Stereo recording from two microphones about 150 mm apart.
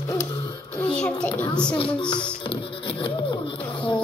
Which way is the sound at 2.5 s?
35° left (ahead or behind).